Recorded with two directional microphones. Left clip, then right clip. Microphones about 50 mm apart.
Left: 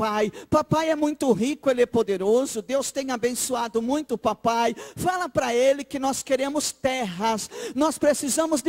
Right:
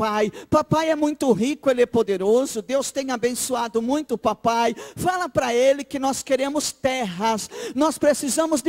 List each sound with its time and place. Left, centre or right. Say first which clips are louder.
0.0 s speech: right 2 dB; right